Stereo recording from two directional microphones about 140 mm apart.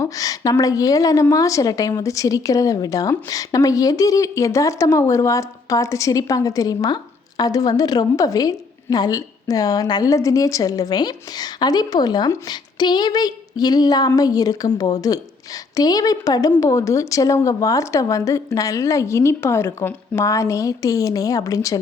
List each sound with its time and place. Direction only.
0.0 s a woman's voice: 25° left (ahead or behind)